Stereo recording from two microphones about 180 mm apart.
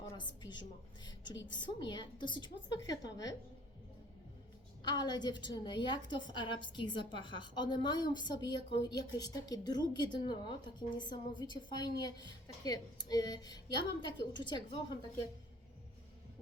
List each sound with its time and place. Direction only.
0.0 s a woman's voice: 25° left (ahead or behind)
1.0 s a sound: 25° left (ahead or behind)
1.5 s a woman's voice: 25° left (ahead or behind)
4.8 s a woman's voice: 25° left (ahead or behind)